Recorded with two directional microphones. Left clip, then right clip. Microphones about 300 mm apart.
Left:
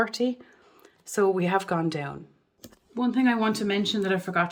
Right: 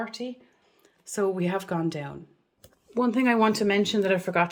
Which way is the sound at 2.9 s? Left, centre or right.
Centre.